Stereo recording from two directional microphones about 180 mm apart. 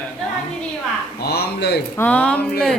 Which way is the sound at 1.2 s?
60° left (ahead or behind).